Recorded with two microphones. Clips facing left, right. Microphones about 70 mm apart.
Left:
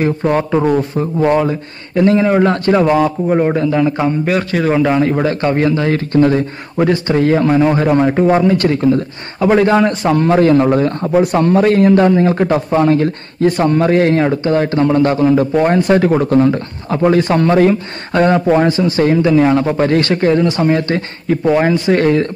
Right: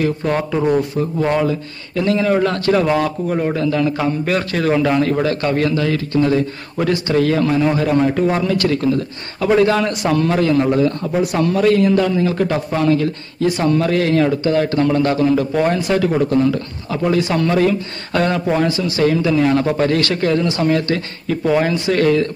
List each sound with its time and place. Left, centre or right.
0.0 s a man's voice: left